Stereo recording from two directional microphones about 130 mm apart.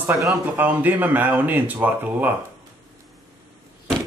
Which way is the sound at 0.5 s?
15° right (ahead or behind).